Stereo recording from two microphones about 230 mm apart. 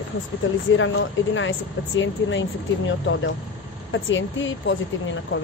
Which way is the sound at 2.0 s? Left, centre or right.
Left.